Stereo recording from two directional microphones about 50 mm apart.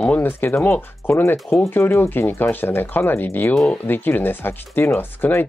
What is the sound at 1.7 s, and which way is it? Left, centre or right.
Speech, left.